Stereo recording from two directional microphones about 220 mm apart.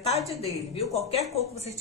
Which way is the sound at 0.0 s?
30° left (ahead or behind).